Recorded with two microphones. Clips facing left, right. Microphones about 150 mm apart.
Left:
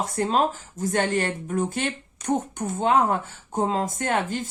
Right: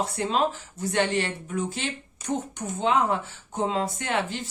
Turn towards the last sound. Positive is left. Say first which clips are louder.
# left 3 dB
turn(degrees=45)  # may be behind; listen again after turning